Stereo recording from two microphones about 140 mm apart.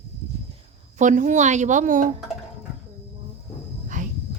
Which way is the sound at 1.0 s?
65° right (ahead or behind).